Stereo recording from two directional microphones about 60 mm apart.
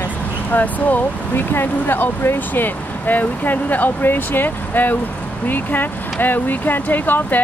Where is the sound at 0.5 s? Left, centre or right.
Left.